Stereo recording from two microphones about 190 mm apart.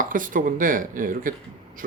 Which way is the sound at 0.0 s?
45° right (ahead or behind).